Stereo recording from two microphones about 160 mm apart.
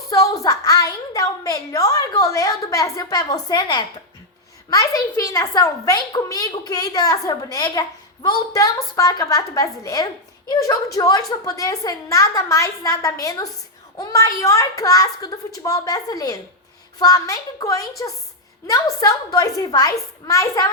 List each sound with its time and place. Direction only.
0.1 s a woman's voice: 20° left (ahead or behind)